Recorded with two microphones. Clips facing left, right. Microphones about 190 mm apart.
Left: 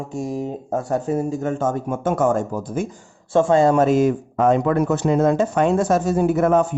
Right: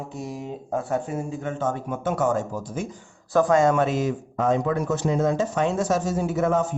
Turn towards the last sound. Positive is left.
turn(degrees=60)  # may be behind; listen again after turning